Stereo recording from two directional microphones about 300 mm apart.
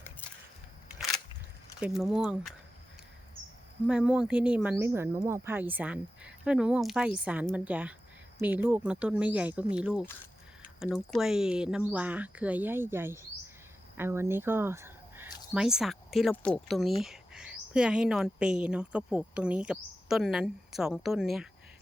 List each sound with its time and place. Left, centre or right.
1.8 s speech: centre
3.8 s speech: centre